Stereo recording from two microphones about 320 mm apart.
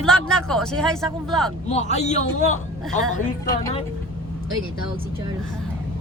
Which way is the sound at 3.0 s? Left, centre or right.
Centre.